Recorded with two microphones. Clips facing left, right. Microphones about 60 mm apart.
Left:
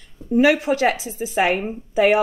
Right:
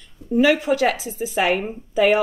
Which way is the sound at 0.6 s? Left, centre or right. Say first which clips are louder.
Even; centre.